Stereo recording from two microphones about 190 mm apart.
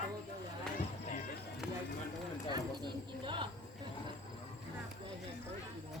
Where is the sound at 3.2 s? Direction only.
25° right (ahead or behind).